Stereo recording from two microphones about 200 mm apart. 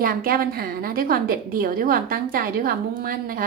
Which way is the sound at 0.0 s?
45° right (ahead or behind).